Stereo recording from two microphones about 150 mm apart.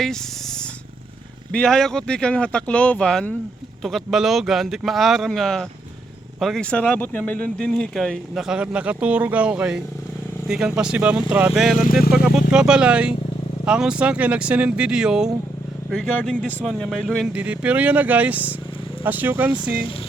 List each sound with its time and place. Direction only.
1.5 s speech: 5° left (ahead or behind)
17.3 s speech: 10° right (ahead or behind)